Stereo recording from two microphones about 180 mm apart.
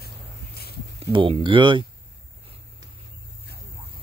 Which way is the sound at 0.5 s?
60° left (ahead or behind).